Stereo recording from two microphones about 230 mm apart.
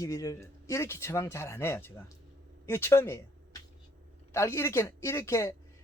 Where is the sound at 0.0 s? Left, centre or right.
Centre.